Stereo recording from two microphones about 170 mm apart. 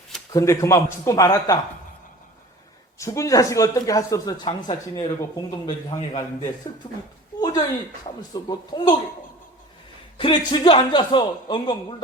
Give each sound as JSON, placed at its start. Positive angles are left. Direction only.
{"t": 0.3, "sound": "a man's voice", "side_deg": 20}
{"t": 3.0, "sound": "a man's voice", "side_deg": 20}
{"t": 4.4, "sound": "a man's voice", "side_deg": 30}
{"t": 7.3, "sound": "a sound", "side_deg": 25}
{"t": 8.0, "sound": "a man's voice", "side_deg": 25}
{"t": 10.2, "sound": "a man's voice", "side_deg": 30}